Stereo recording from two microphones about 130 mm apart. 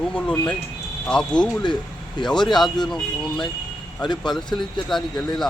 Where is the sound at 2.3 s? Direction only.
Centre (ahead or behind).